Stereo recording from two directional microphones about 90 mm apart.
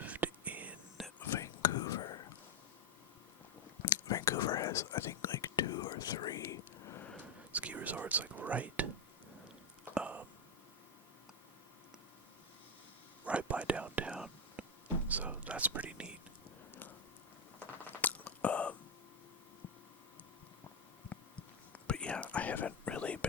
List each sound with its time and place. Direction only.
0.0 s whispering: 15° right (ahead or behind)
1.0 s whispering: centre (ahead or behind)
1.4 s whispering: 40° left (ahead or behind)
4.1 s whispering: 45° left (ahead or behind)
5.6 s whispering: 50° left (ahead or behind)
7.5 s whispering: 15° right (ahead or behind)
9.9 s a sound: 15° right (ahead or behind)
13.2 s whispering: 15° right (ahead or behind)
17.8 s a sound: 20° left (ahead or behind)
21.7 s whispering: 10° left (ahead or behind)